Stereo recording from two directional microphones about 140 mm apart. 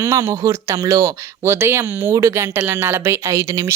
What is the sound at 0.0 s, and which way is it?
Speech, 20° right (ahead or behind).